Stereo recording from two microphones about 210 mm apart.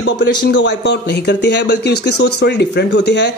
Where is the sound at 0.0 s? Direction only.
60° left (ahead or behind).